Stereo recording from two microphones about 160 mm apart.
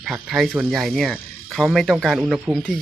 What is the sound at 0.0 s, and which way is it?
Speech, centre (ahead or behind).